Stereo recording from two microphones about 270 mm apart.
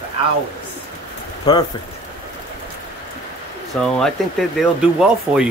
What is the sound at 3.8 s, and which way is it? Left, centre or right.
Speech, centre.